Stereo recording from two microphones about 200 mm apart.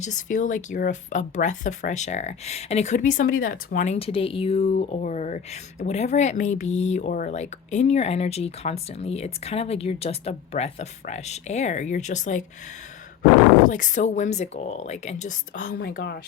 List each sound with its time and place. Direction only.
0.0 s speech: 40° left (ahead or behind)
13.7 s speech: 40° left (ahead or behind)